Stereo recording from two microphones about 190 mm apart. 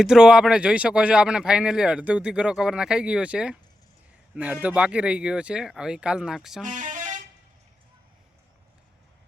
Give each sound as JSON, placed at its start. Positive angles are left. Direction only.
{"t": 0.0, "sound": "speech", "side_deg": -5}
{"t": 6.7, "sound": "vehicle", "side_deg": -40}